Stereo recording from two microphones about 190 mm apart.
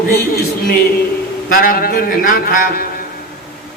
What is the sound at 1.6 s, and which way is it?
A man's voice, 50° left (ahead or behind).